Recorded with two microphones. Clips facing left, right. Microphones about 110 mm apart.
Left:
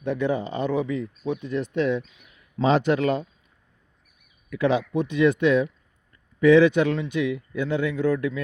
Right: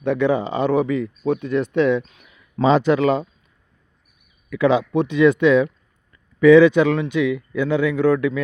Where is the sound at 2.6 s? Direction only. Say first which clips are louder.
Right 5 dB; 60° right (ahead or behind).